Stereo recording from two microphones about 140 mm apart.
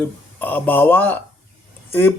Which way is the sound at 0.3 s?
10° left (ahead or behind).